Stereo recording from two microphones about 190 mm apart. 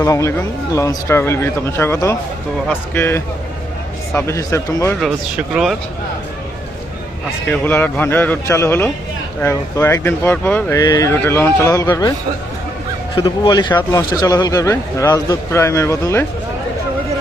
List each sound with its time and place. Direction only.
0.0 s speech: 15° left (ahead or behind)
5.5 s speech: 5° right (ahead or behind)
7.5 s speech: 10° left (ahead or behind)
13.1 s speech: 25° left (ahead or behind)